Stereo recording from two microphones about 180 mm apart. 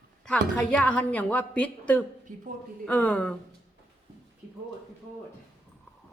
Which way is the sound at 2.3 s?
45° right (ahead or behind).